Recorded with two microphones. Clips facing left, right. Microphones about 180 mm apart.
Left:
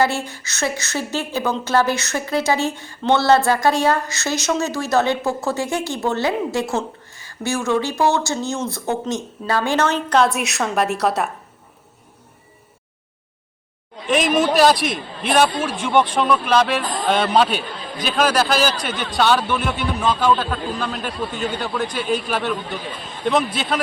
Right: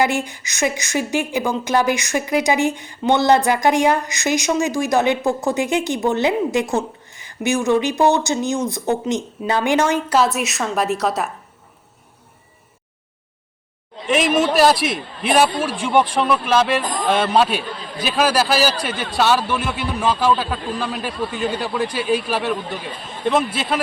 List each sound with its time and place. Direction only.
0.0 s speech: 15° right (ahead or behind); by 11.3 s centre (ahead or behind)
14.1 s a man's voice: centre (ahead or behind)